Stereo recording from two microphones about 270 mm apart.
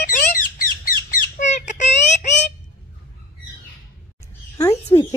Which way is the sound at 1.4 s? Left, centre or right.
Left.